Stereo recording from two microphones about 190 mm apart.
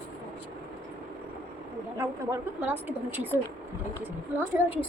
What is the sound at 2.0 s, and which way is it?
A woman's voice, 10° right (ahead or behind).